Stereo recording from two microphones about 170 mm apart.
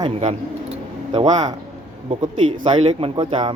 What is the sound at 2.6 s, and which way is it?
Speech, 30° right (ahead or behind).